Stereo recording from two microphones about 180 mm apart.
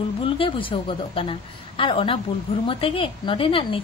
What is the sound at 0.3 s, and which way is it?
A woman's voice, 30° left (ahead or behind).